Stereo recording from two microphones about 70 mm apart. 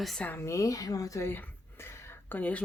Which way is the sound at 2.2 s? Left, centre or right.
Left.